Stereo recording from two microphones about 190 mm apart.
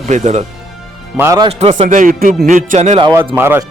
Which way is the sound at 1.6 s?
35° right (ahead or behind).